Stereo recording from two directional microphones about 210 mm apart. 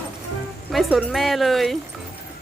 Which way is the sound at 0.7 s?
Centre (ahead or behind).